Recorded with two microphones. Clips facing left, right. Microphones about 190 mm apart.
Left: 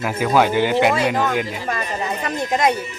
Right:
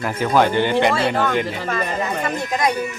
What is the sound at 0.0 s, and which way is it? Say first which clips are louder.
Speech: even; 5° left (ahead or behind).